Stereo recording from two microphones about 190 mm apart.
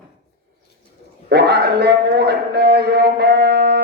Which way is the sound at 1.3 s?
60° right (ahead or behind).